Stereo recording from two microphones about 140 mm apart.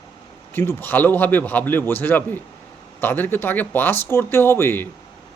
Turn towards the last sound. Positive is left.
turn(degrees=15)  # may be behind; listen again after turning